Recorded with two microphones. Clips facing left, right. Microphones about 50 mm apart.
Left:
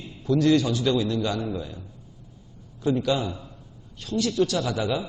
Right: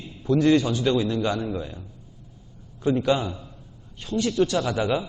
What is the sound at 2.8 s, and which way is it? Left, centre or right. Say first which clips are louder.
A man's voice: right 2 dB; right.